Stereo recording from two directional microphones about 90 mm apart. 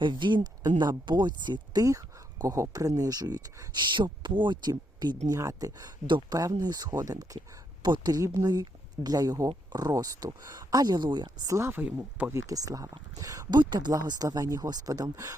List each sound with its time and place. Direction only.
0.0 s speech: 60° right (ahead or behind)
2.4 s speech: 40° right (ahead or behind)
3.8 s speech: 60° right (ahead or behind); by 7.3 s 40° right (ahead or behind)
7.3 s speech: 55° right (ahead or behind)
11.4 s speech: 30° right (ahead or behind)
13.6 s speech: 55° right (ahead or behind)
15.1 s speech: 35° right (ahead or behind)